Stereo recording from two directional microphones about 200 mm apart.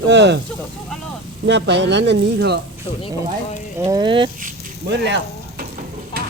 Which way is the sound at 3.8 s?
20° right (ahead or behind).